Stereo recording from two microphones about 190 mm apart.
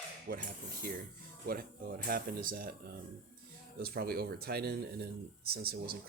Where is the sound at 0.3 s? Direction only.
50° right (ahead or behind).